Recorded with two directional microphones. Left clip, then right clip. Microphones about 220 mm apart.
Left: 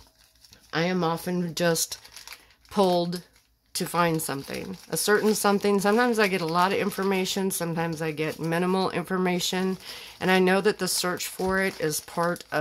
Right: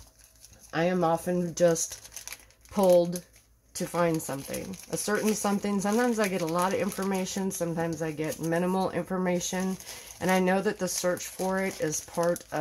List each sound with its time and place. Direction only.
0.7 s speech: 45° left (ahead or behind)